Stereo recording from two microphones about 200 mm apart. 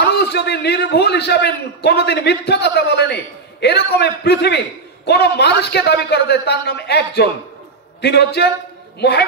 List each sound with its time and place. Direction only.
0.1 s a man's voice: 55° left (ahead or behind)